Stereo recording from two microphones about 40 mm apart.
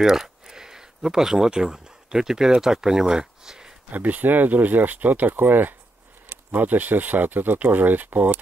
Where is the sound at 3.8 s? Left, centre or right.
Right.